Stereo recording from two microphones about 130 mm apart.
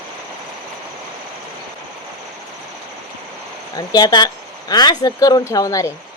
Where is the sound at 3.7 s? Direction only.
30° left (ahead or behind).